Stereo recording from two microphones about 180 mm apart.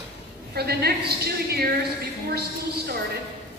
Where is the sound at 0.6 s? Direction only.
60° right (ahead or behind).